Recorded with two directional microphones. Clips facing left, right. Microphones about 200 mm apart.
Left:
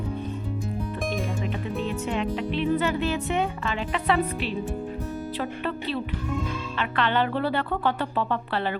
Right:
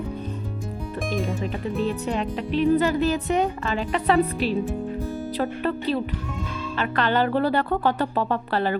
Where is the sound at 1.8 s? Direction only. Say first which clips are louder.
Right 1 dB; 35° right (ahead or behind).